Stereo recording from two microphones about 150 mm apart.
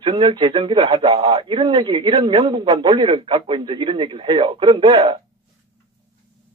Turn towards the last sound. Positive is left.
turn(degrees=-30)  # may be behind; listen again after turning